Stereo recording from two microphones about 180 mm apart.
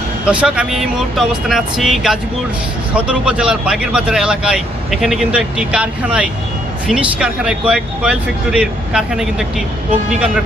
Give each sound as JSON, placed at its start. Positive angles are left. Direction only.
{"t": 0.3, "sound": "speech", "side_deg": -5}